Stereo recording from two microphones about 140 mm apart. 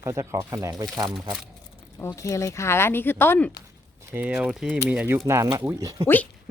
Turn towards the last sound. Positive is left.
turn(degrees=-25)  # may be behind; listen again after turning